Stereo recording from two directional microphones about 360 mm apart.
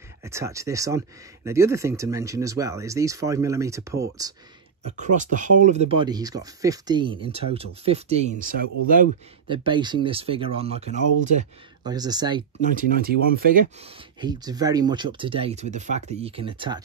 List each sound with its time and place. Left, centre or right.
0.2 s speech: centre
4.8 s speech: centre
13.0 s speech: right
14.2 s speech: centre